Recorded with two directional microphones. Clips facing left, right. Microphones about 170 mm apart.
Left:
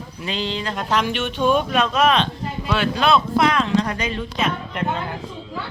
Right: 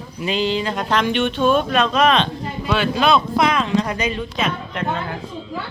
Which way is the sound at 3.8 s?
15° right (ahead or behind).